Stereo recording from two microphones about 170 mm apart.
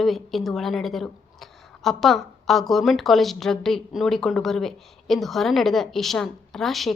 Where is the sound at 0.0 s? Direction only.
Centre (ahead or behind).